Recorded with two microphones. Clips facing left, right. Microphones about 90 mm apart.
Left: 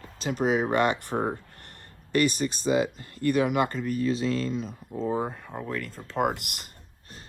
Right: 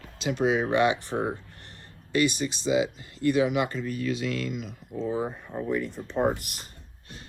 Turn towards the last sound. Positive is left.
turn(degrees=65)  # may be behind; listen again after turning